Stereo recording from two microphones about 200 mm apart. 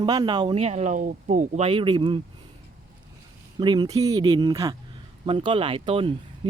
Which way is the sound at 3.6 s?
20° right (ahead or behind).